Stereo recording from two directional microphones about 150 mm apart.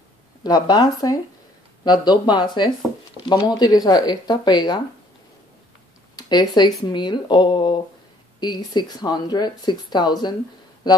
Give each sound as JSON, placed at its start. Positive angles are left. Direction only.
{"t": 0.4, "sound": "speech", "side_deg": 25}
{"t": 6.1, "sound": "speech", "side_deg": 30}